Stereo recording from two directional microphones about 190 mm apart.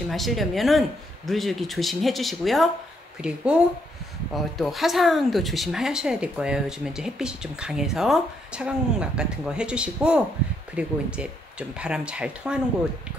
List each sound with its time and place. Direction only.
0.1 s speech: centre (ahead or behind)